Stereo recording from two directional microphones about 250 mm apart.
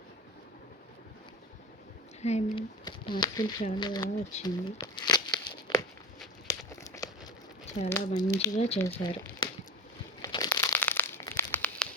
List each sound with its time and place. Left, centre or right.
2.2 s speech: left
4.4 s crumpling: centre
7.9 s speech: centre
8.5 s speech: left
8.8 s speech: centre
10.2 s crumpling: centre